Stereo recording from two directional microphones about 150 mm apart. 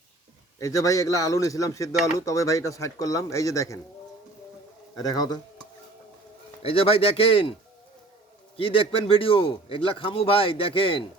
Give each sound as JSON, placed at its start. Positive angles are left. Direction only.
{"t": 0.6, "sound": "speech", "side_deg": 20}
{"t": 5.0, "sound": "speech", "side_deg": 25}
{"t": 6.6, "sound": "a man's voice", "side_deg": 40}
{"t": 8.5, "sound": "a man's voice", "side_deg": 35}